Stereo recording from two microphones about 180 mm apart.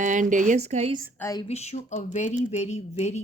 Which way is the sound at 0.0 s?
45° right (ahead or behind).